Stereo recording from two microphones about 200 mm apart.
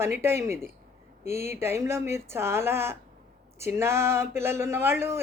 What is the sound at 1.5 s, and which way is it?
Speech, 10° right (ahead or behind).